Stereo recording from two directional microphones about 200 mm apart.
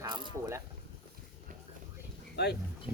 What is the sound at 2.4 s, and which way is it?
Speech, 55° left (ahead or behind).